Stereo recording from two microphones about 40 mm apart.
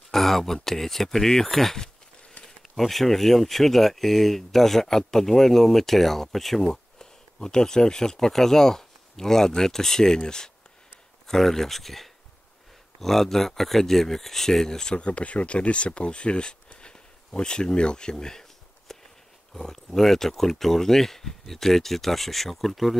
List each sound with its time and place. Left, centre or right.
0.1 s speech: centre
15.0 s speech: left; by 22.9 s centre